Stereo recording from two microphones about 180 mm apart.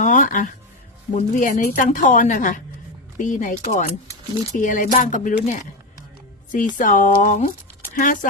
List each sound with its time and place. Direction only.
0.0 s a sound: 45° left (ahead or behind)
1.1 s speech: 45° left (ahead or behind)
6.7 s speech: 45° left (ahead or behind)